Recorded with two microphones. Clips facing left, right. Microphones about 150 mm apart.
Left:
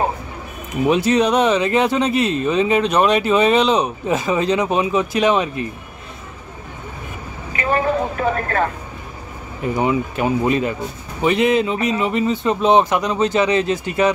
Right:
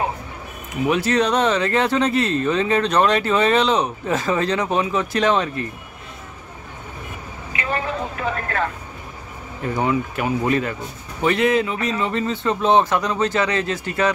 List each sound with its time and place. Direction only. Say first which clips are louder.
0.8 s speech: left 3 dB; 20° left (ahead or behind)
7.5 s vehicle: left 6 dB; 45° left (ahead or behind)
9.6 s speech: left 2 dB; 15° left (ahead or behind)